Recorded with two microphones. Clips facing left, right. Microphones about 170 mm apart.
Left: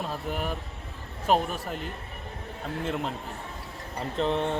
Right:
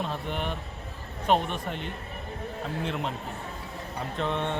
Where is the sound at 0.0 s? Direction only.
5° left (ahead or behind).